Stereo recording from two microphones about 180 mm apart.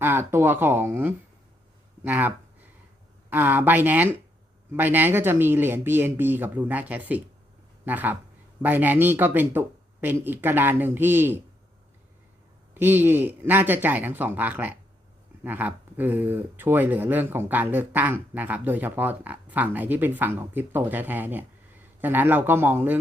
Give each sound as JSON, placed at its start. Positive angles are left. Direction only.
{"t": 0.0, "sound": "speech", "side_deg": -15}
{"t": 12.7, "sound": "speech", "side_deg": -10}